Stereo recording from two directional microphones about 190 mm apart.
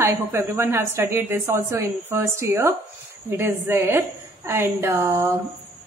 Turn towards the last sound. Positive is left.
turn(degrees=-15)  # may be behind; listen again after turning